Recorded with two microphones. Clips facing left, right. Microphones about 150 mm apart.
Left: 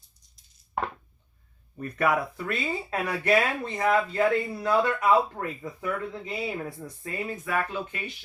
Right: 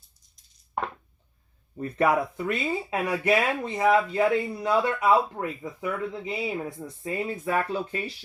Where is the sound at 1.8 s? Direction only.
25° right (ahead or behind).